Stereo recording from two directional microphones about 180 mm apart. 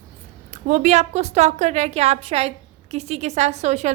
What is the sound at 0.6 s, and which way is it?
A woman's voice, 45° right (ahead or behind).